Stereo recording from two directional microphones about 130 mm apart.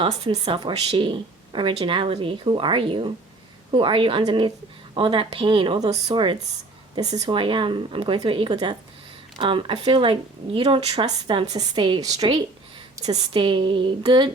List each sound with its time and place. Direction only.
0.0 s a woman's voice: 40° right (ahead or behind)
13.1 s speech: 40° right (ahead or behind)